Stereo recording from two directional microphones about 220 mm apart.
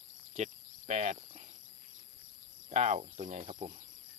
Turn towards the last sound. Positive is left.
turn(degrees=-25)  # may be behind; listen again after turning